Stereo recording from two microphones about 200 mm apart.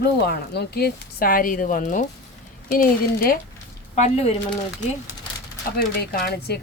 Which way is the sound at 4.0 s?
35° left (ahead or behind).